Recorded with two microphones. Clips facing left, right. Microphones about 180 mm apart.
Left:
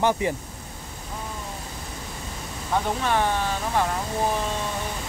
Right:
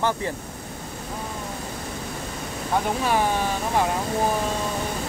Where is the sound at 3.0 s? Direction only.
10° right (ahead or behind).